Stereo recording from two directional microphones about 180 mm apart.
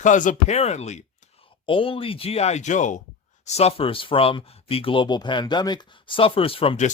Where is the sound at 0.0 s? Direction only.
45° left (ahead or behind).